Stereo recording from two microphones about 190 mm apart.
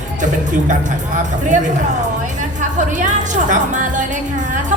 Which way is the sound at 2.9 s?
40° right (ahead or behind).